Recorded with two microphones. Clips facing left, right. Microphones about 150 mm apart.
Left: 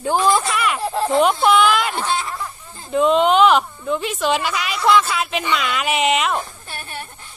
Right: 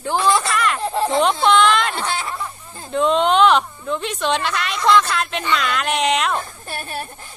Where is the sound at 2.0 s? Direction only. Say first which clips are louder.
Left 2 dB; 60° right (ahead or behind).